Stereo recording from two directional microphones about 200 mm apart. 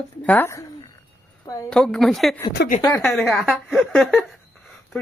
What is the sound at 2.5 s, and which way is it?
Speech, 45° left (ahead or behind).